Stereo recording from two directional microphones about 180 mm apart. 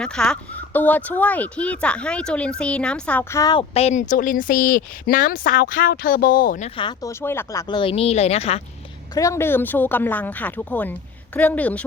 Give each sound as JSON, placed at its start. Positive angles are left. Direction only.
{"t": 0.0, "sound": "speech", "side_deg": 5}
{"t": 3.8, "sound": "a woman's voice", "side_deg": 40}
{"t": 6.7, "sound": "speech", "side_deg": 20}
{"t": 7.7, "sound": "a woman's voice", "side_deg": 30}
{"t": 9.1, "sound": "speech", "side_deg": 15}